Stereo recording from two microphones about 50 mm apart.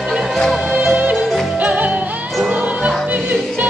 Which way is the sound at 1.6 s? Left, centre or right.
Right.